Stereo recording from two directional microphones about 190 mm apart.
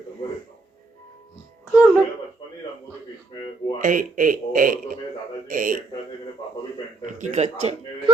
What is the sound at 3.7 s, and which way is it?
A man's voice, 45° right (ahead or behind).